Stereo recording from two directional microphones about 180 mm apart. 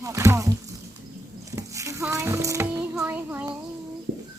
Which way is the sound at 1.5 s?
20° right (ahead or behind).